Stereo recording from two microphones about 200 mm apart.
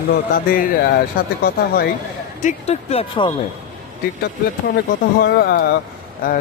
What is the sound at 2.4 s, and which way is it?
Speech, 35° left (ahead or behind).